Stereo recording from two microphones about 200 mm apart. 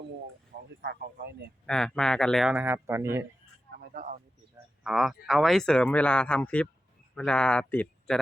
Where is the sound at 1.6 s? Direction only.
5° left (ahead or behind); by 3.2 s 15° right (ahead or behind).